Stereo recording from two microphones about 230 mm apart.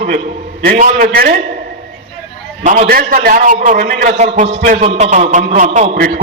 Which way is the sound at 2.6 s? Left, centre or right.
Right.